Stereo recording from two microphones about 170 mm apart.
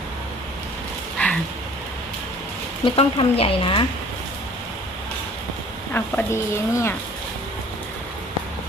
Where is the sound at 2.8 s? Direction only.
30° left (ahead or behind).